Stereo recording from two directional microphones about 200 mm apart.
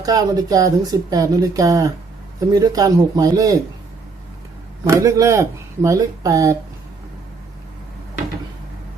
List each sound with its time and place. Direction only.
0.0 s speech: 20° right (ahead or behind)
4.8 s speech: 15° right (ahead or behind)